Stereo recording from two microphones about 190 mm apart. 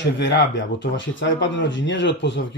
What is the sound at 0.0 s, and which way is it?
Speech, 70° left (ahead or behind).